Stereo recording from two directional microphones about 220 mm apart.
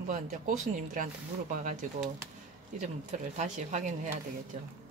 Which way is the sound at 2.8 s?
30° right (ahead or behind).